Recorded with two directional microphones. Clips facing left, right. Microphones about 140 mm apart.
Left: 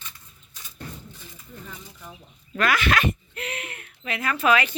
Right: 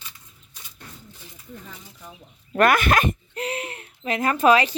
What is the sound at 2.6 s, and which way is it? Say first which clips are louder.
Speech: right 5 dB; 50° right (ahead or behind).